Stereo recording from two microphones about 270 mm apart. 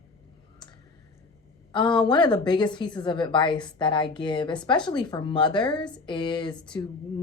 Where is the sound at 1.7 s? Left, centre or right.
Centre.